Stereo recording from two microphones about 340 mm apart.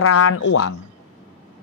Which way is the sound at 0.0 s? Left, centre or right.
Left.